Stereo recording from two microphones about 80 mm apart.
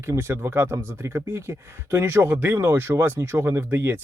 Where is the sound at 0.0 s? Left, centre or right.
Right.